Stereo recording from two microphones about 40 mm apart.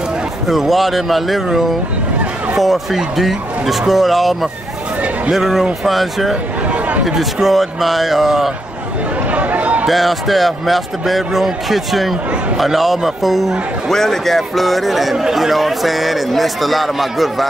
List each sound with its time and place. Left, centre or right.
0.5 s a man's voice: centre
9.3 s chatter: right
9.8 s a man's voice: centre
13.8 s a man's voice: centre